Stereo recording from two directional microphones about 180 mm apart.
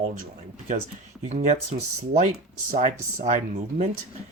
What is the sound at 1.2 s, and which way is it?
Speech, 35° right (ahead or behind).